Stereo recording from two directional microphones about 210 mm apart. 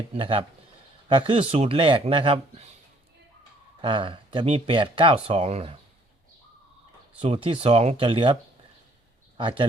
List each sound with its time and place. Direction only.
0.1 s speech: 25° right (ahead or behind)
3.8 s speech: 25° right (ahead or behind)
7.2 s speech: 25° right (ahead or behind)